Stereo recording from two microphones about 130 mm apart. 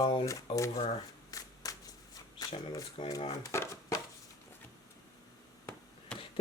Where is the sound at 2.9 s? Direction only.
40° left (ahead or behind).